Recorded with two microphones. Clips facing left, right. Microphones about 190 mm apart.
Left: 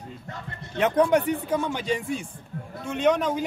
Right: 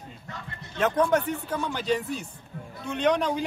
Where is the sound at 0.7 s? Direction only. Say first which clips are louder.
Left 3 dB; 15° left (ahead or behind).